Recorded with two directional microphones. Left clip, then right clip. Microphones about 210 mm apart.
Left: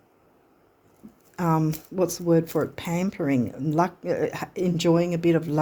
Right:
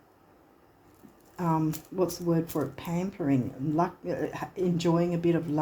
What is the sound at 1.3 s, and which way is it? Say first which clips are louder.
Speech: left 4 dB; 55° left (ahead or behind).